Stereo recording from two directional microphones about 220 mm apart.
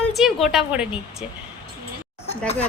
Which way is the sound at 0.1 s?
Centre (ahead or behind).